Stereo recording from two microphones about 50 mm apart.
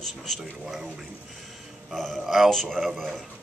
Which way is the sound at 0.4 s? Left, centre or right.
Centre.